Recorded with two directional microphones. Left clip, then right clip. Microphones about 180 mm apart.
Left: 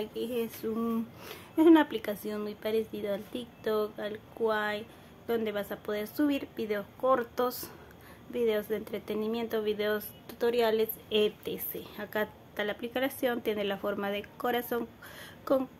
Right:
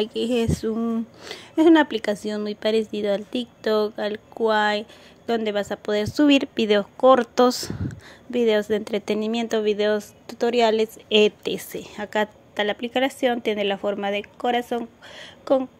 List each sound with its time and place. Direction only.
0.0 s a woman's voice: 40° right (ahead or behind)
0.7 s a woman's voice: 25° right (ahead or behind)